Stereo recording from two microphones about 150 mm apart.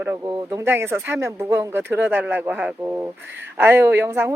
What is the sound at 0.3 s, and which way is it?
Speech, 30° right (ahead or behind).